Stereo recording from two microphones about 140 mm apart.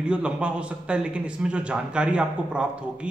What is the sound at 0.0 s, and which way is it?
Speech, 10° right (ahead or behind).